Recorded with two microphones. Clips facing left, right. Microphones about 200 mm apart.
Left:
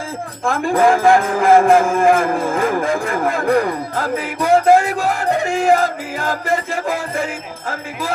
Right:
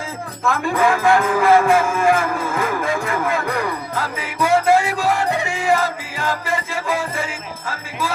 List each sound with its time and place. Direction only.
0.4 s music: 50° left (ahead or behind)
2.0 s cattle: 50° left (ahead or behind)